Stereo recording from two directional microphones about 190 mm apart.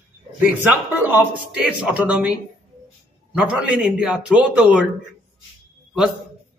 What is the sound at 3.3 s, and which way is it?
A man's voice, 5° right (ahead or behind).